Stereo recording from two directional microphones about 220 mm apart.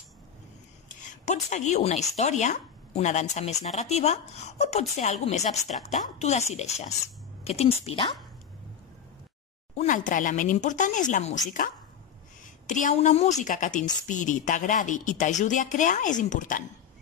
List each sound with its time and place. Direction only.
0.8 s speech: 35° left (ahead or behind)
9.8 s speech: 35° left (ahead or behind)
12.6 s speech: 35° left (ahead or behind)